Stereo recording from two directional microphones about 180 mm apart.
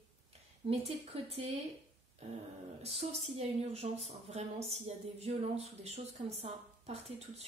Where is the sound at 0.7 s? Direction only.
35° right (ahead or behind).